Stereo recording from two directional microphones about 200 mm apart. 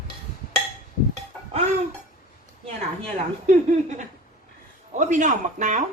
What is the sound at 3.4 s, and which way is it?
A man's voice, 35° right (ahead or behind).